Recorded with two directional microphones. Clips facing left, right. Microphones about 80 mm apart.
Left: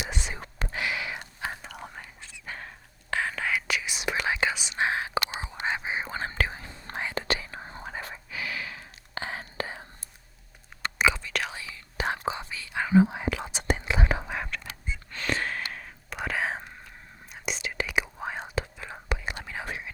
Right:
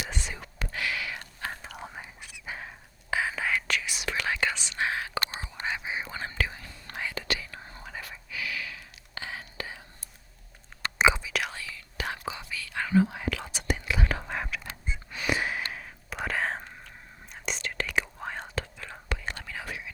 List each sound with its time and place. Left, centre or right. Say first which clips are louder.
0.0 s whispering: left 1 dB; left
0.3 s whispering: left 2 dB; left
0.7 s a sound: left 1 dB; left
1.6 s whispering: even; centre
2.0 s whispering: right 1 dB; centre
2.6 s whispering: right 1 dB; centre
3.5 s whispering: even; centre; by 9.8 s left
10.9 s whispering: right 2 dB; right
11.2 s whispering: even; centre
11.5 s whispering: left 2 dB; left
14.3 s whispering: even; centre
14.8 s gasp: right 1 dB; centre
15.7 s whispering: even; centre
19.5 s whispering: left 2 dB; left